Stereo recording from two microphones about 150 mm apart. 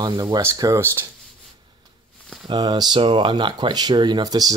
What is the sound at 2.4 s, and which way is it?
Speech, 25° right (ahead or behind).